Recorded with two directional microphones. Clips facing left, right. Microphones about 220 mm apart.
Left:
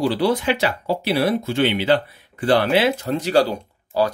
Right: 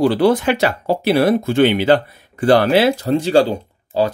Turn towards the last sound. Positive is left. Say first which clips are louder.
# right 2 dB
turn(degrees=-25)  # may be behind; listen again after turning